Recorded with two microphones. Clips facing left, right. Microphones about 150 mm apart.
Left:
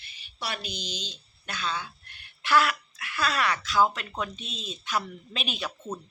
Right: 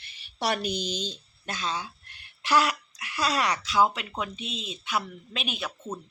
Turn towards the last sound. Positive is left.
turn(degrees=-5)  # may be behind; listen again after turning